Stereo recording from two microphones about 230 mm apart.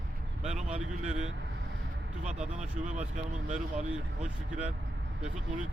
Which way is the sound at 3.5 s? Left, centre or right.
Right.